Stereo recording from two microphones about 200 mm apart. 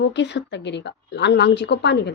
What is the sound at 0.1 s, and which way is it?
Speech, 60° left (ahead or behind).